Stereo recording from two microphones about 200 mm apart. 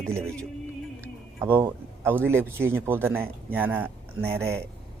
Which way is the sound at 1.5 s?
10° right (ahead or behind).